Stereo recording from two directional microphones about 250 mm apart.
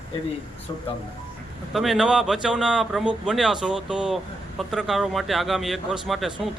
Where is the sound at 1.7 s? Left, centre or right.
Centre.